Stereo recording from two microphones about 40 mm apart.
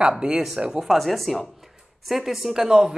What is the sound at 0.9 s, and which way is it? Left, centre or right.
Speech, centre.